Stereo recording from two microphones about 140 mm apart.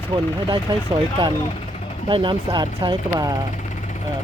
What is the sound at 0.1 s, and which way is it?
Speech, 40° right (ahead or behind).